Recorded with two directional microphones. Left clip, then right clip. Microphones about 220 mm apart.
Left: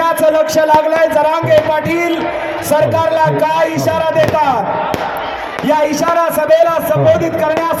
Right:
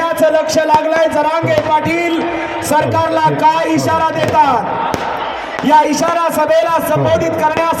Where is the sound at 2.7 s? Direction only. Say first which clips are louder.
Left 1 dB; 5° left (ahead or behind).